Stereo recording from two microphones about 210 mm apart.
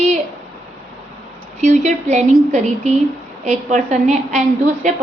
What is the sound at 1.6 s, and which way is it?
A woman's voice, 35° right (ahead or behind).